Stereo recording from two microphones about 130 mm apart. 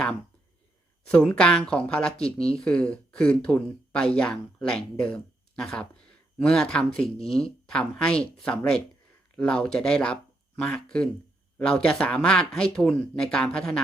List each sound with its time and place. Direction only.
1.0 s speech: 10° left (ahead or behind)
7.0 s speech: 50° left (ahead or behind)
7.3 s speech: 5° left (ahead or behind)